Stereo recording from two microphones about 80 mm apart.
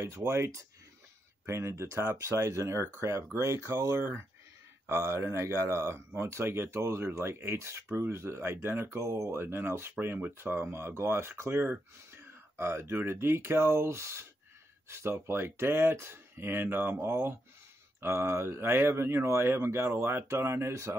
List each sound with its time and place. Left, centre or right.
0.0 s speech: right